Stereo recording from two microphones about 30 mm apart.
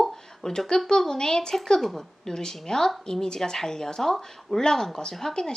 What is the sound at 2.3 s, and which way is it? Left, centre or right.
A woman's voice, centre.